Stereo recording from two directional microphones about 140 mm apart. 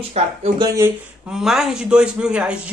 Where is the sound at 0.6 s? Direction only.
25° right (ahead or behind).